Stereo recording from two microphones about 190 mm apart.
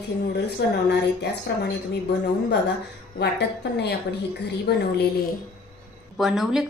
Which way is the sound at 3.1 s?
60° left (ahead or behind).